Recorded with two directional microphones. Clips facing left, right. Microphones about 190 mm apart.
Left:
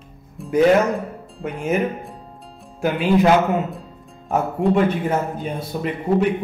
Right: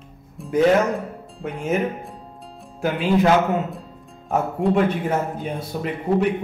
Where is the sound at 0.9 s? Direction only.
10° left (ahead or behind).